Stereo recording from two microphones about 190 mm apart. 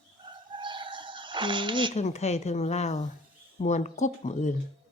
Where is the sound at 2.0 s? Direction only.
35° left (ahead or behind).